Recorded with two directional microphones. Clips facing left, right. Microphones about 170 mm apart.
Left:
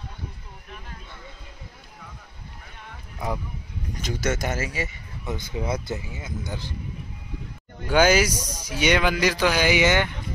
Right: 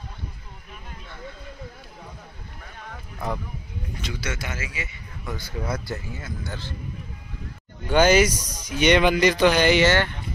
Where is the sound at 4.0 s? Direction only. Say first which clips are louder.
Left 6 dB; 45° left (ahead or behind).